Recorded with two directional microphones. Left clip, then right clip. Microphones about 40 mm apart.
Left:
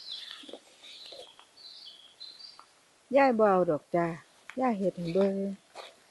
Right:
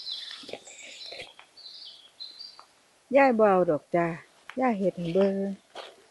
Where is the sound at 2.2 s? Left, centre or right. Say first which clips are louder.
Right 4 dB; left.